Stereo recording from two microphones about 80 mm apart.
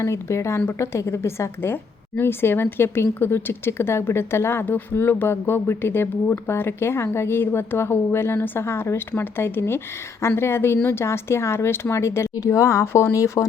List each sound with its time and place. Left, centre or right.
0.0 s a woman's voice: left